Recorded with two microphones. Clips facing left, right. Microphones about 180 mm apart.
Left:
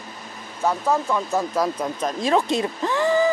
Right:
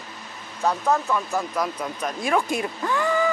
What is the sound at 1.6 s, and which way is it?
Speech, 30° left (ahead or behind).